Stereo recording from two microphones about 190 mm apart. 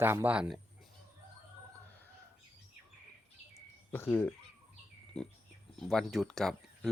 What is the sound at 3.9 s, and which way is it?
Speech, 10° left (ahead or behind).